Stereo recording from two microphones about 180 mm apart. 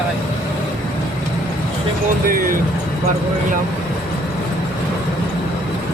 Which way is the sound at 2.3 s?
55° right (ahead or behind).